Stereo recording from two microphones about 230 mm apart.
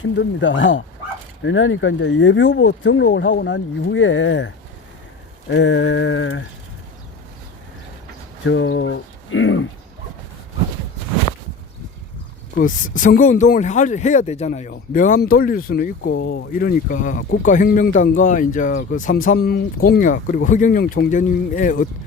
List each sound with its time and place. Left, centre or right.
0.0 s speech: left
8.4 s speech: left
12.5 s speech: left